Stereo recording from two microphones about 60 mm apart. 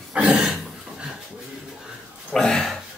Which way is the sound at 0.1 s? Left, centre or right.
Centre.